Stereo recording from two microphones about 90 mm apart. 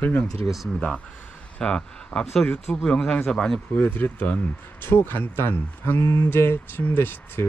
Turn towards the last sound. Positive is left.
turn(degrees=20)  # may be behind; listen again after turning